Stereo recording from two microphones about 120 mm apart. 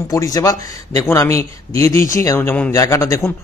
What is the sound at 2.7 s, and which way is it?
Speech, 25° left (ahead or behind).